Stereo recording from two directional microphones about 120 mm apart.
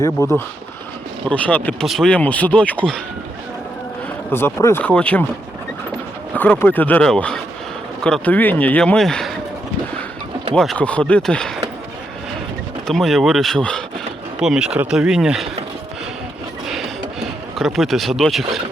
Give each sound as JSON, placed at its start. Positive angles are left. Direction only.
{"t": 0.2, "sound": "speech", "side_deg": 25}
{"t": 1.3, "sound": "a man's voice", "side_deg": 15}
{"t": 1.8, "sound": "a man's voice", "side_deg": 0}
{"t": 4.3, "sound": "a man's voice", "side_deg": 20}
{"t": 6.3, "sound": "a man's voice", "side_deg": 15}
{"t": 10.5, "sound": "a man's voice", "side_deg": 5}
{"t": 12.9, "sound": "speech", "side_deg": 0}
{"t": 14.3, "sound": "speech", "side_deg": -5}
{"t": 17.6, "sound": "speech", "side_deg": 0}